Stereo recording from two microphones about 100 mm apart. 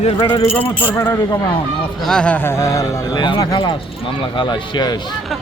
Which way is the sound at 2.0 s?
5° left (ahead or behind).